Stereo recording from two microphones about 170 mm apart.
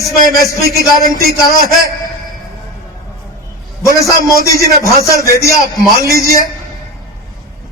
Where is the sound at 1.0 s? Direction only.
60° right (ahead or behind).